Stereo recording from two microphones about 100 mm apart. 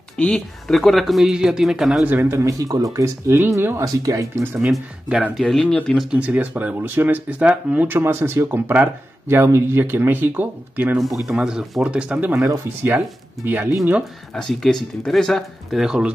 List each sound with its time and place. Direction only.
0.2 s speech: 5° left (ahead or behind)
2.0 s speech: 25° right (ahead or behind)
4.6 s speech: 5° right (ahead or behind)
6.0 s speech: 15° right (ahead or behind)
11.0 s speech: centre (ahead or behind)
13.4 s speech: 20° right (ahead or behind)
14.3 s speech: 5° left (ahead or behind)